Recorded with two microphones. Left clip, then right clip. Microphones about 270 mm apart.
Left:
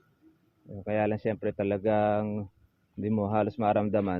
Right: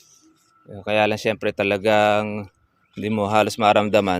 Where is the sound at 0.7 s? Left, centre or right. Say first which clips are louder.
Right 9 dB; right.